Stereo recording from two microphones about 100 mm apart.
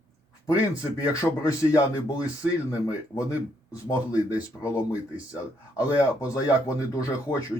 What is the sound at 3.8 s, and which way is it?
Speech, 35° left (ahead or behind).